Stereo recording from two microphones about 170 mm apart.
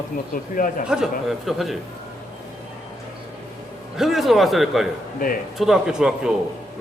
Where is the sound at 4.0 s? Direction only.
Centre (ahead or behind).